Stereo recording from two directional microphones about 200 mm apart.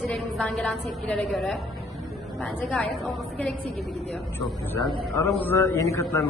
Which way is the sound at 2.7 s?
Centre (ahead or behind).